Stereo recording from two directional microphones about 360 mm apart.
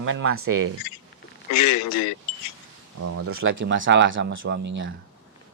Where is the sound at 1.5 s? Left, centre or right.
Left.